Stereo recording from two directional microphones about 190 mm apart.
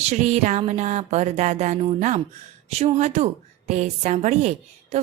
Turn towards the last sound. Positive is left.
turn(degrees=-35)  # may be behind; listen again after turning